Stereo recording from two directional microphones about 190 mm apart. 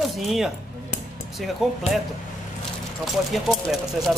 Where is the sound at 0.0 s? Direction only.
Centre (ahead or behind).